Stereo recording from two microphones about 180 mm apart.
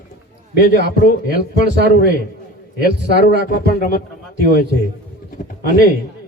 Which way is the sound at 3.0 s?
65° right (ahead or behind).